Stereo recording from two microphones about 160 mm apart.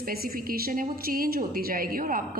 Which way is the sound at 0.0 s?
65° right (ahead or behind).